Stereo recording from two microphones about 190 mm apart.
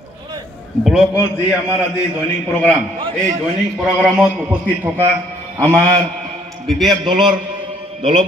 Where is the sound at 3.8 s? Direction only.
5° right (ahead or behind).